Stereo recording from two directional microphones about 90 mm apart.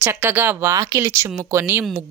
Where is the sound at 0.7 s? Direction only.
40° right (ahead or behind).